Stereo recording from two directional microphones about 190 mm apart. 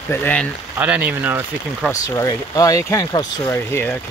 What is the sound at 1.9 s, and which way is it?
Speech, 15° left (ahead or behind).